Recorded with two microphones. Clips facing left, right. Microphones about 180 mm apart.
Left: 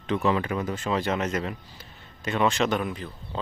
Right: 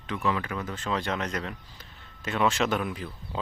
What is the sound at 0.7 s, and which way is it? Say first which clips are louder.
Speech: left 2 dB; 5° left (ahead or behind).